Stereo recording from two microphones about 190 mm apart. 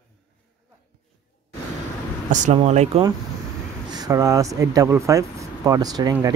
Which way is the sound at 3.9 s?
20° right (ahead or behind).